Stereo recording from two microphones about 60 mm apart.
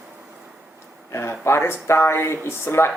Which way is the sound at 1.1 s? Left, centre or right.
Left.